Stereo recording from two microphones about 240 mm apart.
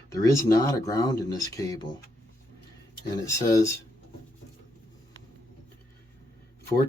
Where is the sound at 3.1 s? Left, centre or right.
Centre.